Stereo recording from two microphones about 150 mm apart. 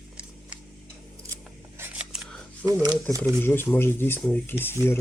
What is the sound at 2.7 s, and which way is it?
Speech, 25° right (ahead or behind).